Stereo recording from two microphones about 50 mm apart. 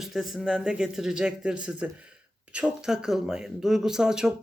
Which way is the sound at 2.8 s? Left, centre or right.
Centre.